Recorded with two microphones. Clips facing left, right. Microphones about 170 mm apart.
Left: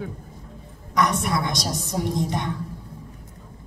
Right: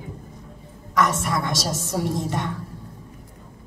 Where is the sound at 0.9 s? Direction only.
15° left (ahead or behind).